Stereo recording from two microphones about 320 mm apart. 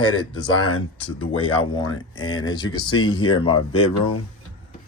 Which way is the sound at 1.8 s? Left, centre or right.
Centre.